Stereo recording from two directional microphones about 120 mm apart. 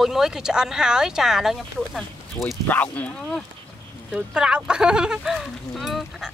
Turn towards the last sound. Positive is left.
turn(degrees=0)  # may be behind; listen again after turning